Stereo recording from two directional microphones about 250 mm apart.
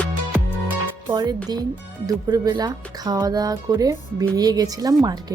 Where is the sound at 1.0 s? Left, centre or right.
Centre.